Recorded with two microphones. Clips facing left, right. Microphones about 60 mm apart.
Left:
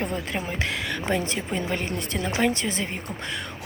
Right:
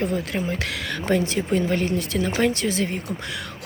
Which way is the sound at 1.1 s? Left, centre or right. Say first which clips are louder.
Right 6 dB; left.